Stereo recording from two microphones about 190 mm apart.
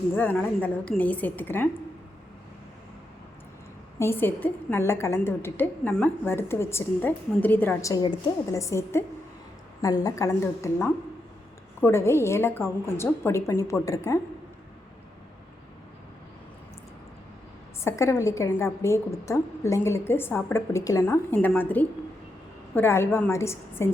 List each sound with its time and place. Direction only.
0.1 s a woman's voice: 10° left (ahead or behind)
3.9 s a woman's voice: 10° left (ahead or behind)
17.8 s a woman's voice: 15° left (ahead or behind)